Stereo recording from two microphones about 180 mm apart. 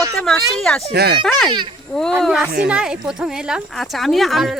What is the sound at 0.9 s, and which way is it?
Speech, 60° right (ahead or behind).